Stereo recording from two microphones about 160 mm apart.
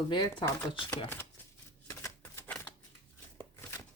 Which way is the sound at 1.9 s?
15° left (ahead or behind).